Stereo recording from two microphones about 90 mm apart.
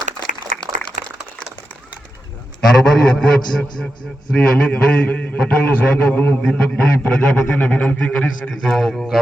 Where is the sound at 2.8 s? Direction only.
5° left (ahead or behind).